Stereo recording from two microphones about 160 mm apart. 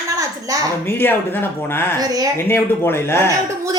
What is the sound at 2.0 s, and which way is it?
Speech, 25° right (ahead or behind).